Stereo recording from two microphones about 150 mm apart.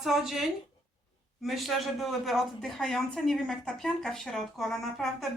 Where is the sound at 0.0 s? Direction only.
Centre (ahead or behind).